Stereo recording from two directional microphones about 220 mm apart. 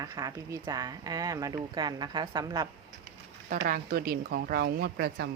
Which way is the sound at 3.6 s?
40° right (ahead or behind).